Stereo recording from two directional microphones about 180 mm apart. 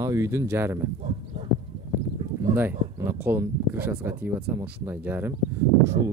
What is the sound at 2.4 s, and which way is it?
Speech, 15° right (ahead or behind).